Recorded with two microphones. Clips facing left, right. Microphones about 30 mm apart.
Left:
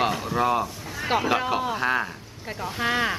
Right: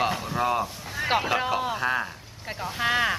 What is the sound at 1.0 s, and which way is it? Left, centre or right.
Speech, centre.